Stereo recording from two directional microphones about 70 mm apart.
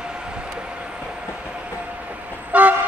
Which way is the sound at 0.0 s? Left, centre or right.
Centre.